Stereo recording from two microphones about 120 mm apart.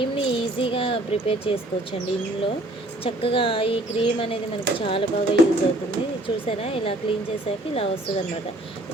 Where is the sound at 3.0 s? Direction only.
50° left (ahead or behind).